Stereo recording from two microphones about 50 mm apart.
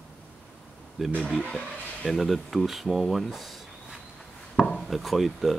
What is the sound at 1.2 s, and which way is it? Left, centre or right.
Speech, centre.